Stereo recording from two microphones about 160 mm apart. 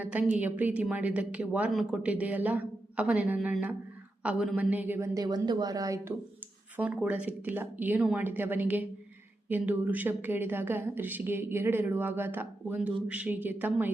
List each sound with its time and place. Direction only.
0.0 s a woman's voice: 10° right (ahead or behind)
6.7 s a woman's voice: 10° right (ahead or behind)